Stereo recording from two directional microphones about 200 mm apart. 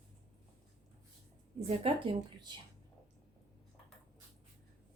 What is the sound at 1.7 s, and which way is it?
Speech, 25° right (ahead or behind).